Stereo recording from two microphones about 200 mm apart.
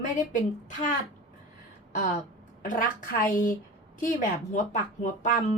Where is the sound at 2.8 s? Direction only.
40° left (ahead or behind).